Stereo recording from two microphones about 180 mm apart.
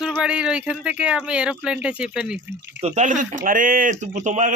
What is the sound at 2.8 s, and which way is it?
Speech, 40° right (ahead or behind).